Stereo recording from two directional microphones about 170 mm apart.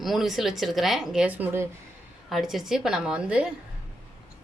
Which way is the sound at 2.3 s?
Centre (ahead or behind).